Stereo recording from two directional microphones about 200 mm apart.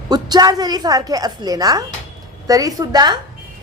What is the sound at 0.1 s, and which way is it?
A woman's voice, 20° right (ahead or behind).